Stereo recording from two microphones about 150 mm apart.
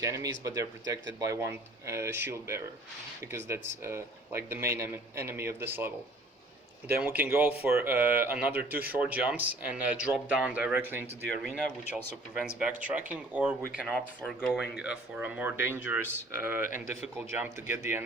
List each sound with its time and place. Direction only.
0.0 s speech: 20° right (ahead or behind)
12.5 s speech: 5° right (ahead or behind)